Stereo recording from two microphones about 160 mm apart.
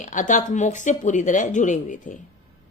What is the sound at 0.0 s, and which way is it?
Speech, 50° left (ahead or behind).